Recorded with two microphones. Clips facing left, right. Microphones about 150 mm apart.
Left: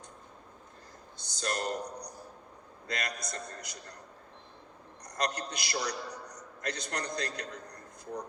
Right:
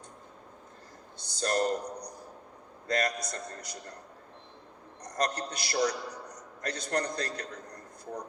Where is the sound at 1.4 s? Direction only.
40° right (ahead or behind).